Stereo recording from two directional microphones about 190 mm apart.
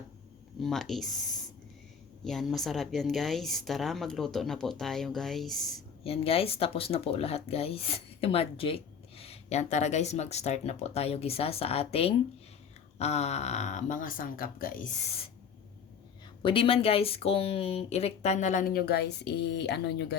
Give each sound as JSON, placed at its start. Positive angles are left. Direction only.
{"t": 0.6, "sound": "a woman's voice", "side_deg": 0}
{"t": 6.1, "sound": "speech", "side_deg": 30}
{"t": 16.4, "sound": "speech", "side_deg": 25}